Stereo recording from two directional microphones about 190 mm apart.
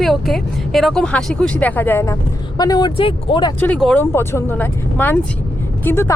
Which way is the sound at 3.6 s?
5° left (ahead or behind).